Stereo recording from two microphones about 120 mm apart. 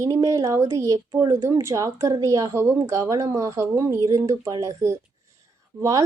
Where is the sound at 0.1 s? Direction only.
25° right (ahead or behind).